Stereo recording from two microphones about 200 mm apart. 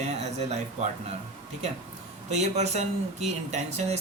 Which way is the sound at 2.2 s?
35° right (ahead or behind).